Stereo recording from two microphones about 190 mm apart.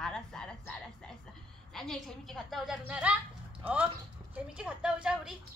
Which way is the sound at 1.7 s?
Centre (ahead or behind).